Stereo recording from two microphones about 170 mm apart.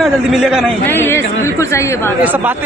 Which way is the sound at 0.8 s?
10° left (ahead or behind).